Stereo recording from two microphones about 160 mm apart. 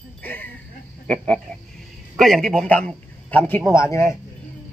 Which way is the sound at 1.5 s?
5° left (ahead or behind).